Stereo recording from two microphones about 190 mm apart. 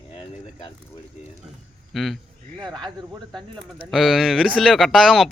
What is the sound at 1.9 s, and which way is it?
Speech, centre (ahead or behind).